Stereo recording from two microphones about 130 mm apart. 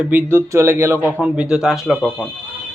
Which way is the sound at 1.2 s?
5° right (ahead or behind).